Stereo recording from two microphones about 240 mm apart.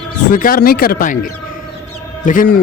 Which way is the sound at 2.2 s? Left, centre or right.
Left.